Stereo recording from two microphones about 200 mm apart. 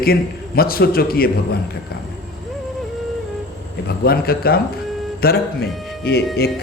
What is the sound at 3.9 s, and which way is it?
Speech, 50° left (ahead or behind).